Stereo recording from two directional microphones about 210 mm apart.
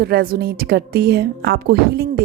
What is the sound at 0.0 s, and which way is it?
A woman's voice, 45° right (ahead or behind).